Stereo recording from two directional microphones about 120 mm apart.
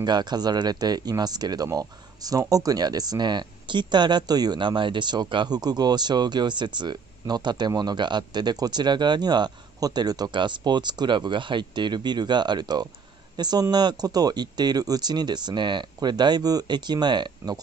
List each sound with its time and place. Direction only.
0.0 s speech: 35° right (ahead or behind)